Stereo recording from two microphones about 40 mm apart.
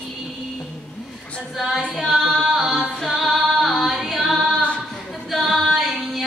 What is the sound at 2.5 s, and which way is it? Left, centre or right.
Female singing, centre.